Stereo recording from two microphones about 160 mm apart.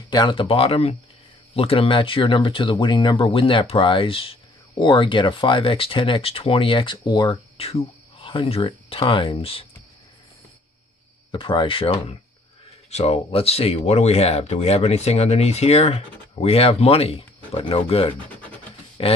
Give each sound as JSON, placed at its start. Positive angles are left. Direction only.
{"t": 0.1, "sound": "speech", "side_deg": 30}
{"t": 11.3, "sound": "speech", "side_deg": 30}
{"t": 18.3, "sound": "scratch", "side_deg": 10}
{"t": 19.0, "sound": "speech", "side_deg": 35}